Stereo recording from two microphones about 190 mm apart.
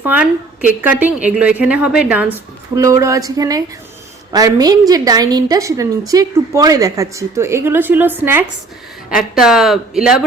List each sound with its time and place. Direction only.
0.0 s a woman's voice: 10° right (ahead or behind)
2.7 s a woman's voice: 15° right (ahead or behind)